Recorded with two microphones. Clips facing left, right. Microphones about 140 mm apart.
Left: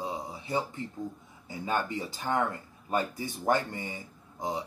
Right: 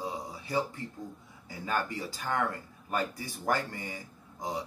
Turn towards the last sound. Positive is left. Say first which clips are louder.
# left 2 dB
turn(degrees=25)  # may be behind; listen again after turning